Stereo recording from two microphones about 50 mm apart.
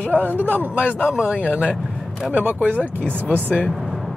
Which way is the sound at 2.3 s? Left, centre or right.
Right.